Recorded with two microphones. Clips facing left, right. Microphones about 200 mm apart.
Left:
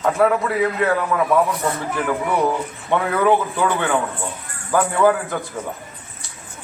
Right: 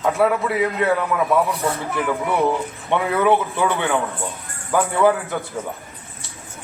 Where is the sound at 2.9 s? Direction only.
15° right (ahead or behind).